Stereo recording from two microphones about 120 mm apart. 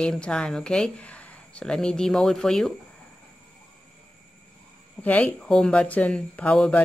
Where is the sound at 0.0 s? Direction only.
10° left (ahead or behind).